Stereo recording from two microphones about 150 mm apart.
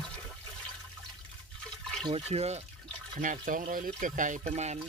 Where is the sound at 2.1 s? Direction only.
45° right (ahead or behind).